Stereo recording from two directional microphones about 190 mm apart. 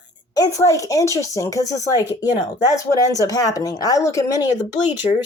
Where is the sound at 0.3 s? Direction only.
15° left (ahead or behind).